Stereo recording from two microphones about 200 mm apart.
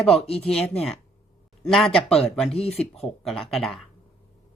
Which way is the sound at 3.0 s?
Centre (ahead or behind).